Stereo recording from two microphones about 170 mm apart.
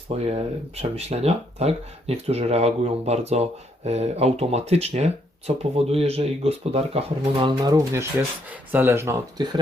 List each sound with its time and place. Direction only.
0.3 s speech: 40° right (ahead or behind)
8.4 s speech: 10° right (ahead or behind)